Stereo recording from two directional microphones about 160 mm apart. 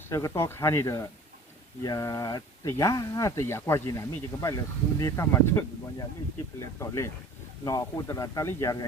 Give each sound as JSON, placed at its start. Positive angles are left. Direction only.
{"t": 0.1, "sound": "speech", "side_deg": 20}